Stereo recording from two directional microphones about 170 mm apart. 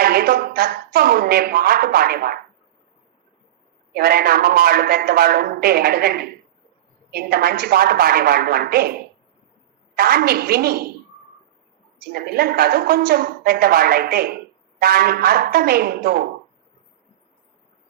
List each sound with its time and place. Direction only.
0.0 s speech: 65° right (ahead or behind)
3.9 s speech: 65° right (ahead or behind)
12.2 s speech: 65° right (ahead or behind)